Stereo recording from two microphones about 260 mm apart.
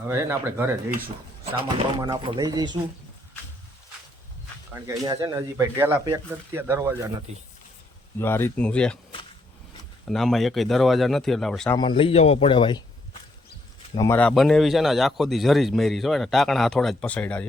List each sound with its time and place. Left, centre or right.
0.1 s speech: centre
4.7 s speech: centre
8.2 s speech: centre
10.1 s speech: centre
11.8 s a man's voice: centre
13.9 s speech: centre